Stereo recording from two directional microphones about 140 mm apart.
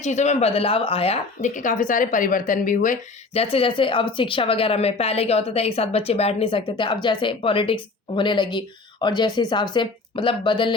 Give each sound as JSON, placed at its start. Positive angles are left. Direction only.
{"t": 0.0, "sound": "speech", "side_deg": 55}
{"t": 3.3, "sound": "speech", "side_deg": 45}